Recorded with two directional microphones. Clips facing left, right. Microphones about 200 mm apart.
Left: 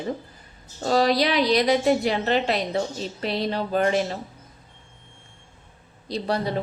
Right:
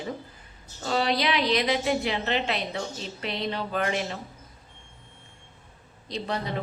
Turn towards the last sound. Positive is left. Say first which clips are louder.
# left 5 dB
turn(degrees=35)  # may be behind; listen again after turning